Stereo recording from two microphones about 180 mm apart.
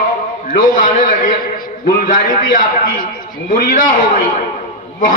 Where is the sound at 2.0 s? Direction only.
50° left (ahead or behind).